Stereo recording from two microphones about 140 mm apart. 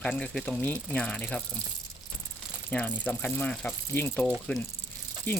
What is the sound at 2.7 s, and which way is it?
Speech, 10° left (ahead or behind).